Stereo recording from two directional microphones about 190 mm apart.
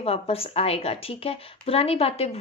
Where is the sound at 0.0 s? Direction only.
30° left (ahead or behind).